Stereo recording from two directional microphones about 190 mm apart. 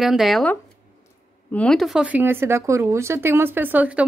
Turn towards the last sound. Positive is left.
turn(degrees=-10)  # may be behind; listen again after turning